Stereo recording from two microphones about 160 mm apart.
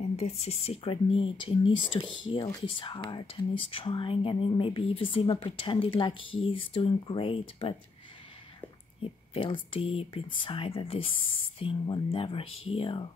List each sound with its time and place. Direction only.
0.1 s speech: 40° left (ahead or behind)
9.3 s speech: 35° left (ahead or behind)